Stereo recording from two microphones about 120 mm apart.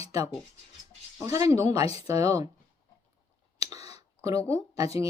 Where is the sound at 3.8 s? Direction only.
60° left (ahead or behind).